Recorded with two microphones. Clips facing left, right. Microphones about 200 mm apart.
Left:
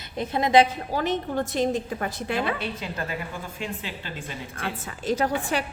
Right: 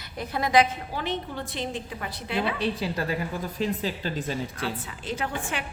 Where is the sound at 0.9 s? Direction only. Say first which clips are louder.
Left 5 dB; 45° left (ahead or behind).